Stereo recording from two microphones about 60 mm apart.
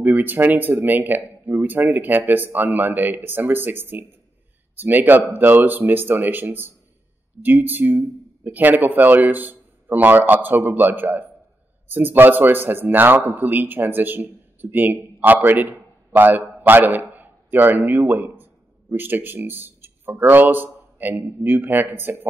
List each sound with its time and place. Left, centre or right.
0.0 s speech: right